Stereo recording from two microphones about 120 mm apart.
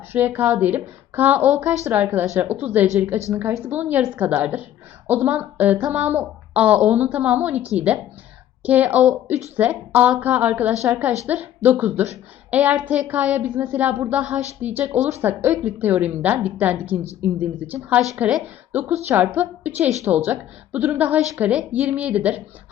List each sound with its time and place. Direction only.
0.1 s a woman's voice: 15° right (ahead or behind)